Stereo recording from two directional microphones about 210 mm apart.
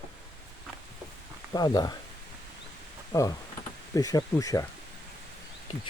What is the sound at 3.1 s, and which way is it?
Speech, 15° left (ahead or behind).